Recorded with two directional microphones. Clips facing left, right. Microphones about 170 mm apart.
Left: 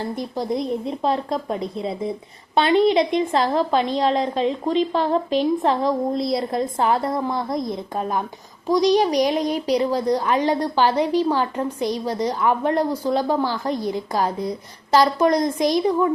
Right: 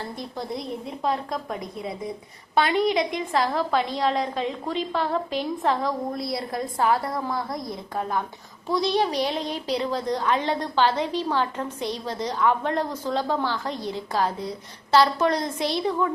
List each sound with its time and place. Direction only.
0.2 s a woman's voice: 20° left (ahead or behind)